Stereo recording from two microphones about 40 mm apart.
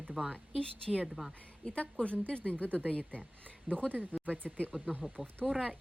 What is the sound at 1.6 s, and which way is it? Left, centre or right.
Speech, left.